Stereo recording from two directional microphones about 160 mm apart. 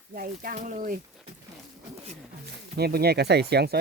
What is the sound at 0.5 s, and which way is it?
Speech, 55° right (ahead or behind).